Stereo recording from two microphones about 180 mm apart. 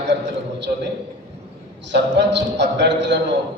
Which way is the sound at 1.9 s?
75° right (ahead or behind).